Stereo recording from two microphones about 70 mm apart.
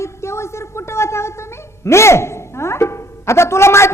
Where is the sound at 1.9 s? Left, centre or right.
Left.